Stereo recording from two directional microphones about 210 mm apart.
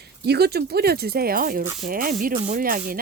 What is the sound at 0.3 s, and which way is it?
Speech, 50° right (ahead or behind).